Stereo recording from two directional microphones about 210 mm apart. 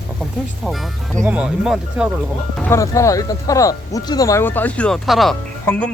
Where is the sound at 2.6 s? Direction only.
15° left (ahead or behind).